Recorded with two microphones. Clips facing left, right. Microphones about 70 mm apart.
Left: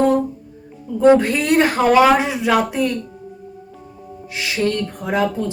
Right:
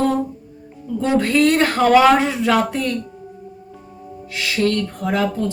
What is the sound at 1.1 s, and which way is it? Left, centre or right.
Speech, centre.